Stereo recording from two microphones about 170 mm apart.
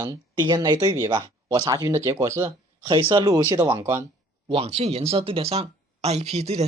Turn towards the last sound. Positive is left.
turn(degrees=-40)  # may be behind; listen again after turning